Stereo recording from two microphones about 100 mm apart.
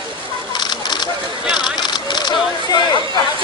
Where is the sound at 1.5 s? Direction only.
50° left (ahead or behind).